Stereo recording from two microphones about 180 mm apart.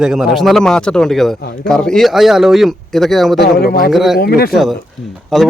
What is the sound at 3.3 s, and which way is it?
Speech, 55° left (ahead or behind).